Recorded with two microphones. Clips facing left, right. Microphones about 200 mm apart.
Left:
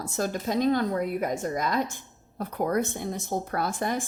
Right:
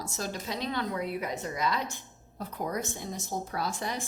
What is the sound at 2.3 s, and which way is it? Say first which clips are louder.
A woman's voice: left 7 dB; 60° left (ahead or behind).